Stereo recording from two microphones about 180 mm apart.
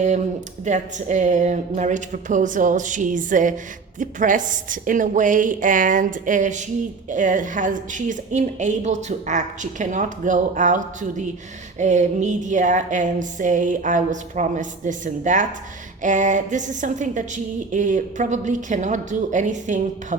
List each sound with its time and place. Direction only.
0.6 s a woman's voice: 40° right (ahead or behind)